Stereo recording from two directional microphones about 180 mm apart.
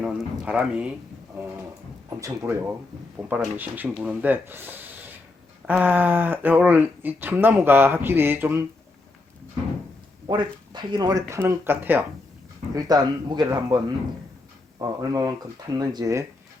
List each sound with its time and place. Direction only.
0.0 s a man's voice: 5° right (ahead or behind)
2.2 s speech: 15° right (ahead or behind)
10.2 s speech: 25° right (ahead or behind)
12.7 s speech: 20° right (ahead or behind)
14.8 s speech: 20° right (ahead or behind)